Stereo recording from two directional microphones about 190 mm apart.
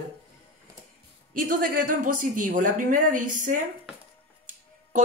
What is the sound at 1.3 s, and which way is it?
Speech, 45° right (ahead or behind).